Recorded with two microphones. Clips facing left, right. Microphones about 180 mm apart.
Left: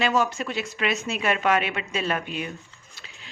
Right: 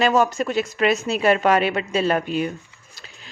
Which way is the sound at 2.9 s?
40° right (ahead or behind).